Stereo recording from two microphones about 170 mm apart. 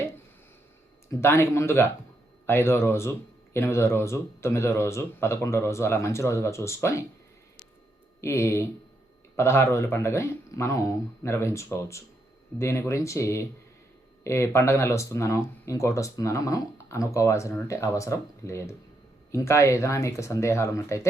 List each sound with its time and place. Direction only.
1.2 s speech: 15° left (ahead or behind)
8.2 s speech: 15° left (ahead or behind)